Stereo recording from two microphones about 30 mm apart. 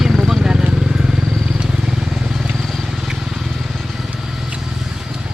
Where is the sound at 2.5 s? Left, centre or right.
Centre.